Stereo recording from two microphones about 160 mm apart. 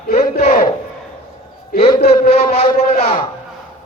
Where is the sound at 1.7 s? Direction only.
70° left (ahead or behind).